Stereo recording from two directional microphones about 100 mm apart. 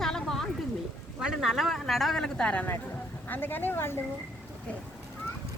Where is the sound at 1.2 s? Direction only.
5° right (ahead or behind); by 4.0 s 25° left (ahead or behind).